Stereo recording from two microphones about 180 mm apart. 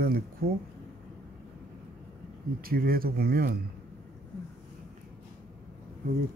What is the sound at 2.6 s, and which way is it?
Speech, 55° right (ahead or behind).